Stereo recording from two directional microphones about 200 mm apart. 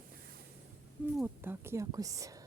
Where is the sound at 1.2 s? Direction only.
10° right (ahead or behind).